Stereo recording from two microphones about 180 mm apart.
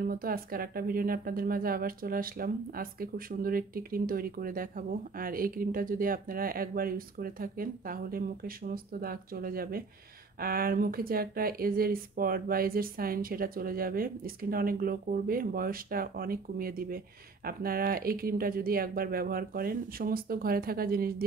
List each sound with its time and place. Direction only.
0.0 s speech: 55° right (ahead or behind)